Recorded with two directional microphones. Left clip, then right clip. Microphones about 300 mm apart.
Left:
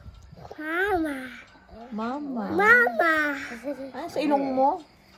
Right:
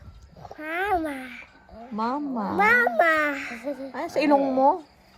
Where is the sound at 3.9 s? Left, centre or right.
Right.